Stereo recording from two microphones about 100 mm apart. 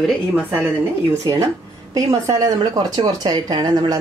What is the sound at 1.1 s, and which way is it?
Speech, 35° right (ahead or behind).